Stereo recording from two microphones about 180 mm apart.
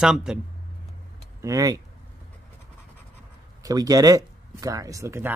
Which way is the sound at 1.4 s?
20° right (ahead or behind).